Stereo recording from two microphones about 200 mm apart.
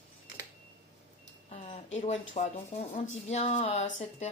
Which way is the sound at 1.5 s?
30° left (ahead or behind).